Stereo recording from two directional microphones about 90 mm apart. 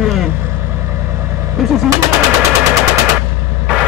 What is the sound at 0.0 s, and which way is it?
Vehicle, centre (ahead or behind).